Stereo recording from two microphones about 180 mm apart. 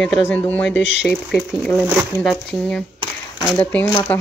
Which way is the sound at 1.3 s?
Centre (ahead or behind).